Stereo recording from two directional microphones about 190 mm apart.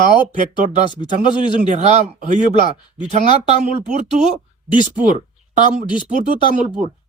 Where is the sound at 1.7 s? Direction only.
40° right (ahead or behind).